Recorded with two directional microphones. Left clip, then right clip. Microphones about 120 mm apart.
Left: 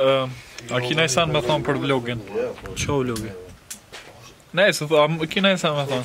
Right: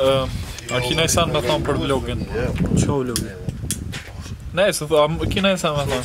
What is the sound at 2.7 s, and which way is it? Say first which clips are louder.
Speech: right 2 dB; 10° left (ahead or behind).